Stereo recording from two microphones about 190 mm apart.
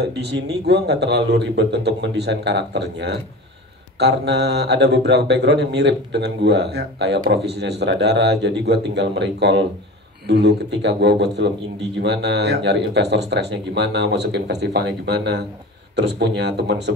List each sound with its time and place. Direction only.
0.7 s speech: 60° right (ahead or behind)